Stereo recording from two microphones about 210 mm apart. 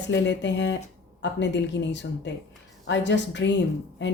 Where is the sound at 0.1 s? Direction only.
60° left (ahead or behind).